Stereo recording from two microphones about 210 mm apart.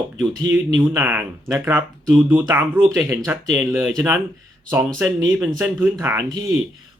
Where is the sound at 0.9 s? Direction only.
10° right (ahead or behind).